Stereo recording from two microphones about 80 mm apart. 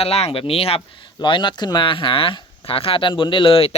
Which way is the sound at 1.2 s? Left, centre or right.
Left.